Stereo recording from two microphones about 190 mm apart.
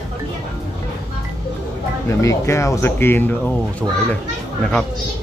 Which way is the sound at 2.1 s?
15° left (ahead or behind).